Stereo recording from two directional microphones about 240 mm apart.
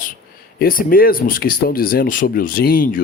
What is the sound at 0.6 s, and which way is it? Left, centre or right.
Speech, left.